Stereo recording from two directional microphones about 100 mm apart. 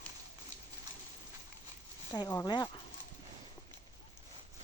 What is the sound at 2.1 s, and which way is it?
Speech, 45° left (ahead or behind).